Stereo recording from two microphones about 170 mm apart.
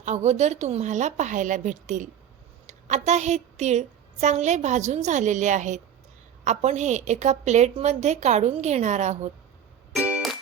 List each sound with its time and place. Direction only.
0.0 s a woman's voice: 40° right (ahead or behind)
9.9 s music: 5° right (ahead or behind)